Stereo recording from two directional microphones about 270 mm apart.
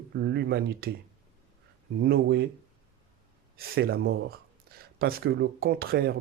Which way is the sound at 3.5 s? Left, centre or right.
Right.